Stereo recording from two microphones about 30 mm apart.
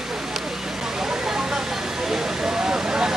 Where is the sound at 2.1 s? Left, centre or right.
Centre.